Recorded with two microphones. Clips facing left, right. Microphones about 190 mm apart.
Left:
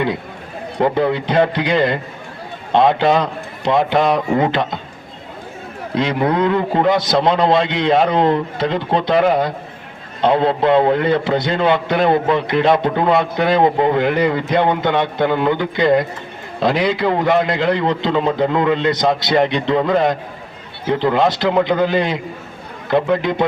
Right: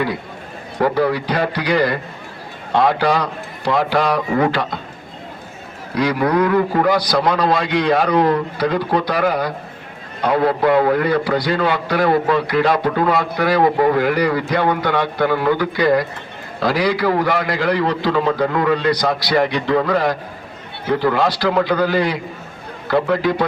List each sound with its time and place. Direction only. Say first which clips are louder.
0.8 s a man's voice: left 1 dB; 20° left (ahead or behind)
5.9 s a man's voice: even; 25° left (ahead or behind)